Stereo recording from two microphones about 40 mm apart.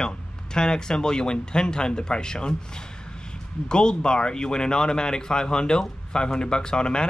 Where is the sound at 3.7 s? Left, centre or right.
Left.